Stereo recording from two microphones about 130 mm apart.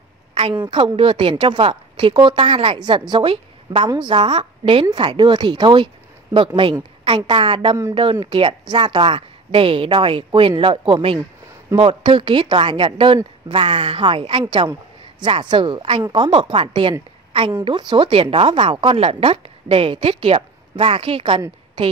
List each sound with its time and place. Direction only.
0.3 s a woman's voice: 45° right (ahead or behind)